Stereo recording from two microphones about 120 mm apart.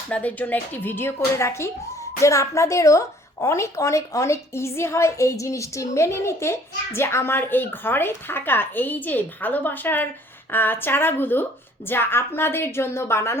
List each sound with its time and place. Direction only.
0.1 s a woman's voice: 15° left (ahead or behind)